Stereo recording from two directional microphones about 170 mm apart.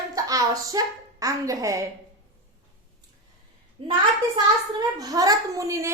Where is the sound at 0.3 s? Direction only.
20° right (ahead or behind).